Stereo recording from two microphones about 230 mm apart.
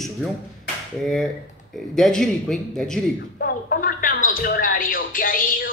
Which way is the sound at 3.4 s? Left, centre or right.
Left.